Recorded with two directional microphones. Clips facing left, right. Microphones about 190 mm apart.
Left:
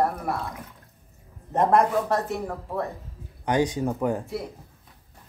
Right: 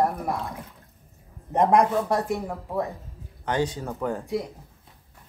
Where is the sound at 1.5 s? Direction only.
15° right (ahead or behind).